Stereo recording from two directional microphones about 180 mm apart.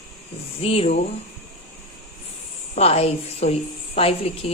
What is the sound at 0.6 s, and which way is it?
Speech, 35° left (ahead or behind).